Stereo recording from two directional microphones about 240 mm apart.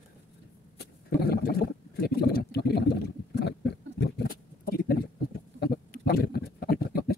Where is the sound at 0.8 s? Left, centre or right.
Left.